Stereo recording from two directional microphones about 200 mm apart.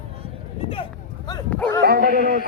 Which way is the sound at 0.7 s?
25° left (ahead or behind).